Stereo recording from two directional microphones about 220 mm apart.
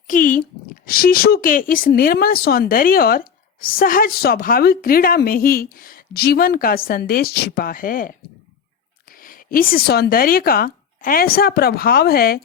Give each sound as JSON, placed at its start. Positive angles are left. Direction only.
{"t": 0.1, "sound": "a woman's voice", "side_deg": 35}